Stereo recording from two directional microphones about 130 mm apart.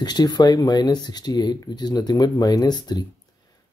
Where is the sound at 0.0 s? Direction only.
30° left (ahead or behind).